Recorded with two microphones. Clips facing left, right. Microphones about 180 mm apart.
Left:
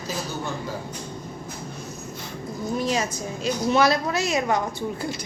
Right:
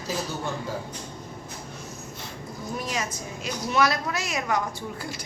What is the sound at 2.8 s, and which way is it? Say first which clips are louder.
A woman's voice: left 6 dB; 30° left (ahead or behind).